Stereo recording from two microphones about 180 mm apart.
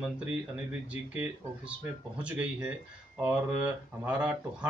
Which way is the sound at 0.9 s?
10° right (ahead or behind).